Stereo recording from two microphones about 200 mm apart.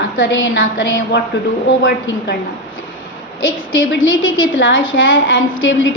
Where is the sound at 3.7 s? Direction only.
75° left (ahead or behind).